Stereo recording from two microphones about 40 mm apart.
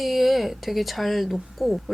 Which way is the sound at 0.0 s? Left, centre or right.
Centre.